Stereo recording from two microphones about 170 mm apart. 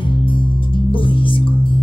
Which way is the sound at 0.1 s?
30° left (ahead or behind).